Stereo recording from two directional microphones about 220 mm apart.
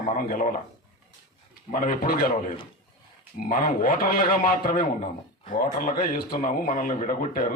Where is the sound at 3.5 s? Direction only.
40° left (ahead or behind).